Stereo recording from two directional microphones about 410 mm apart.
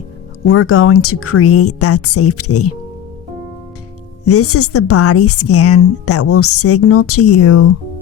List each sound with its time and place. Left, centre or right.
0.4 s a woman's voice: left
4.3 s a woman's voice: left